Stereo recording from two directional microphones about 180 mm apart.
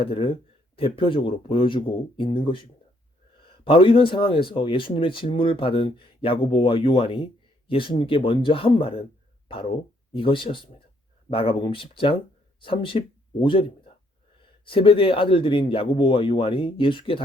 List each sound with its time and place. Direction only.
0.0 s speech: 30° left (ahead or behind)